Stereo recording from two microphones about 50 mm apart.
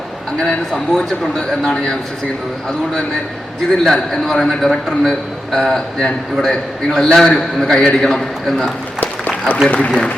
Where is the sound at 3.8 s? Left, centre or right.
Centre.